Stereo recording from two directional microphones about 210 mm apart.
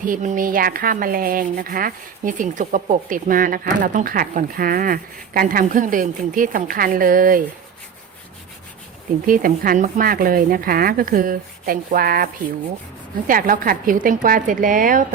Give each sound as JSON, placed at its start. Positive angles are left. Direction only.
{"t": 0.0, "sound": "speech", "side_deg": -40}
{"t": 9.2, "sound": "speech", "side_deg": -40}